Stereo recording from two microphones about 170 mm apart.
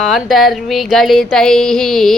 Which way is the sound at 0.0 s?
Centre (ahead or behind).